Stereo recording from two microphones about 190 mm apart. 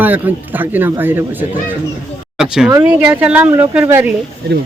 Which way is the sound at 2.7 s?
10° right (ahead or behind).